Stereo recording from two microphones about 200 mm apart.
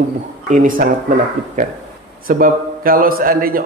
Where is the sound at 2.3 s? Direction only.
45° right (ahead or behind).